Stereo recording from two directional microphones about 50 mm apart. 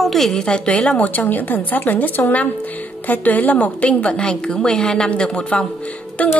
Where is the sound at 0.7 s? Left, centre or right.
Left.